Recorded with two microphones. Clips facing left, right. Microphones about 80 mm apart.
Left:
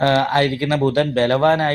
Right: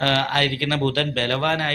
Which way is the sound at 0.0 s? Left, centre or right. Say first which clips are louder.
Left 5 dB; left.